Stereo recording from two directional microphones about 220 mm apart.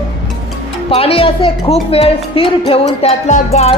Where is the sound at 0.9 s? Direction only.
25° left (ahead or behind).